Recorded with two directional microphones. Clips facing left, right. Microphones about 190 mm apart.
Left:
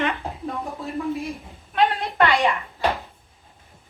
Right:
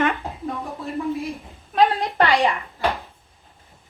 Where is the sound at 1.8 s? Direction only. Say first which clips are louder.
Right 2 dB; 35° right (ahead or behind).